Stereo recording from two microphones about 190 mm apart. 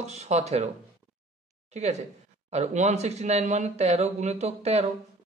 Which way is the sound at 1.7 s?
35° right (ahead or behind).